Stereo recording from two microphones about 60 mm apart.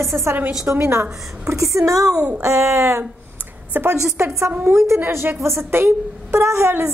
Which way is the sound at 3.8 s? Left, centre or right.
Right.